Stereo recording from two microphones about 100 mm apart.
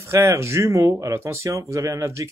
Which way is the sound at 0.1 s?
30° right (ahead or behind).